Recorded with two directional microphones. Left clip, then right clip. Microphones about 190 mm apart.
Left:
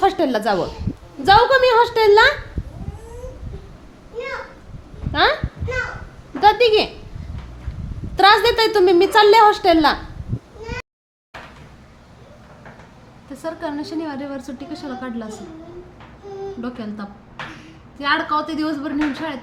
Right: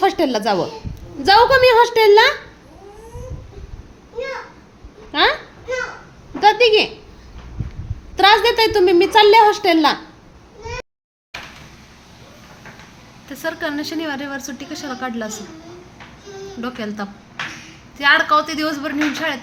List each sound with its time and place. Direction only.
0.0 s a woman's voice: centre (ahead or behind)
5.1 s a woman's voice: centre (ahead or behind)
6.4 s a woman's voice: 5° left (ahead or behind)
8.1 s a woman's voice: 5° left (ahead or behind)
13.3 s a woman's voice: centre (ahead or behind); by 15.3 s 20° right (ahead or behind)
16.6 s a woman's voice: 15° right (ahead or behind)